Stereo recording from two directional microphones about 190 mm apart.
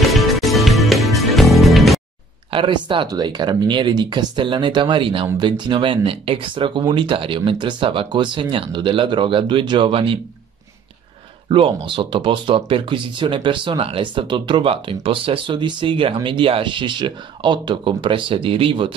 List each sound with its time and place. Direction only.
0.1 s music: centre (ahead or behind)
2.5 s speech: 25° right (ahead or behind)
11.4 s speech: 25° right (ahead or behind)